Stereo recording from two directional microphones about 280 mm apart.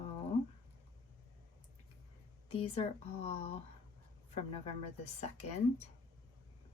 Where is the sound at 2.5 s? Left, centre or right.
Left.